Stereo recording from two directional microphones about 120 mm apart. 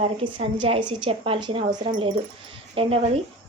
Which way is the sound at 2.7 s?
55° right (ahead or behind).